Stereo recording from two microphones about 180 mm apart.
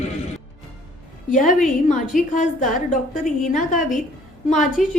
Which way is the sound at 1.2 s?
45° left (ahead or behind).